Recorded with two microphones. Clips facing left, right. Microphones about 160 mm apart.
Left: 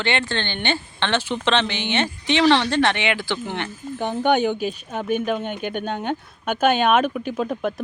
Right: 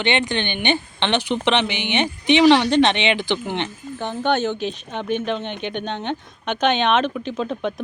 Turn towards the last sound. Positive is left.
turn(degrees=5)  # may be behind; listen again after turning